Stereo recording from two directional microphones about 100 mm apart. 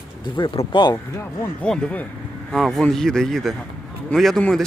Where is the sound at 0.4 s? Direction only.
55° left (ahead or behind).